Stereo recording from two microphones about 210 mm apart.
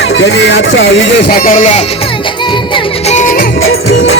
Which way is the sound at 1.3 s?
40° left (ahead or behind).